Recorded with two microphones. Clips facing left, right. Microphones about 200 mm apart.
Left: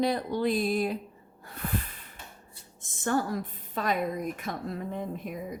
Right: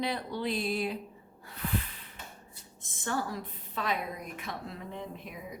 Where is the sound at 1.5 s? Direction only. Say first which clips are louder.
Left 1 dB; 50° left (ahead or behind).